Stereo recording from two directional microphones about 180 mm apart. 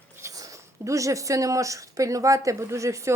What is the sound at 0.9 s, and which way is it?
A woman's voice, 15° right (ahead or behind).